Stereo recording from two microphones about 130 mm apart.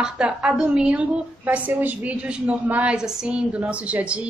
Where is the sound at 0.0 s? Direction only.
5° right (ahead or behind).